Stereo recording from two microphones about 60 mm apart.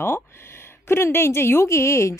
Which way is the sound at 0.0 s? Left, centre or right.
Left.